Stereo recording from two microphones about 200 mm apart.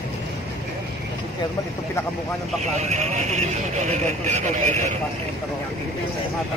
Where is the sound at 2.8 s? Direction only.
35° right (ahead or behind).